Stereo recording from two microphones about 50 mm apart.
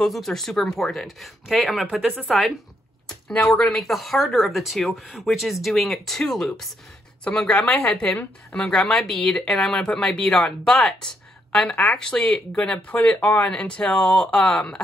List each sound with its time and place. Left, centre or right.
0.0 s speech: centre
3.7 s speech: centre
7.6 s speech: left
12.6 s speech: left